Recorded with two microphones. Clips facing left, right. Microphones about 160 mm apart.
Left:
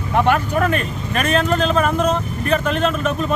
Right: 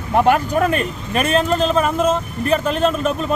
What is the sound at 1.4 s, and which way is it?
Speech, 5° right (ahead or behind).